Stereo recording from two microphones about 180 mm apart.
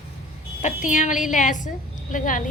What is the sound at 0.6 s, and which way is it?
A woman's voice, 45° left (ahead or behind).